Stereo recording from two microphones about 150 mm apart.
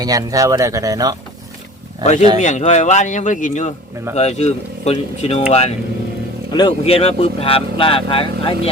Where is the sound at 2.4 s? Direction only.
50° left (ahead or behind).